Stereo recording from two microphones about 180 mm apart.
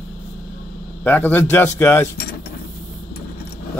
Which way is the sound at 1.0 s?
10° left (ahead or behind).